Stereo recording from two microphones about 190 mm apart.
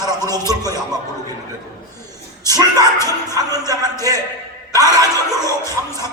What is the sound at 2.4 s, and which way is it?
Music, 20° right (ahead or behind).